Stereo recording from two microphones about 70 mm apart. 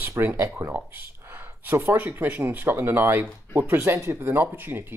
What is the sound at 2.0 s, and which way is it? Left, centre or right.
Speech, right.